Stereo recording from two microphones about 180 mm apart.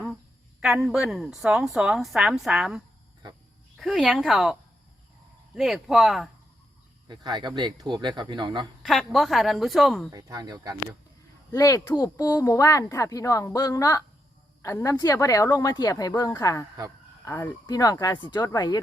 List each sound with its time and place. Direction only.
0.6 s a woman's voice: centre (ahead or behind)
5.5 s a woman's voice: centre (ahead or behind)
7.1 s speech: 25° right (ahead or behind)
8.8 s a woman's voice: centre (ahead or behind)
10.1 s speech: 20° right (ahead or behind)
11.5 s speech: 20° left (ahead or behind)